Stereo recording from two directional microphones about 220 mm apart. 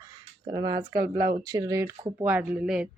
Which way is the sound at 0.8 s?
45° right (ahead or behind).